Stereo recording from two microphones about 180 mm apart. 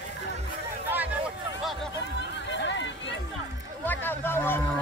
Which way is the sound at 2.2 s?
80° left.